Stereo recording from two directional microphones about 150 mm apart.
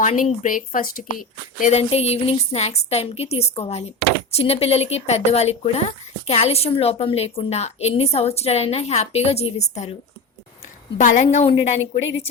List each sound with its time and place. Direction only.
0.0 s a woman's voice: 50° left (ahead or behind)
0.4 s a woman's voice: 65° left (ahead or behind)
1.8 s a woman's voice: 40° left (ahead or behind)
10.9 s a woman's voice: 50° left (ahead or behind)